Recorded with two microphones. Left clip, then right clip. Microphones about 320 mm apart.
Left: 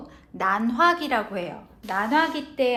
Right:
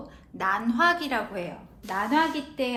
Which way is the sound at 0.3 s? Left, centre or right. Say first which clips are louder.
Left 3 dB; left.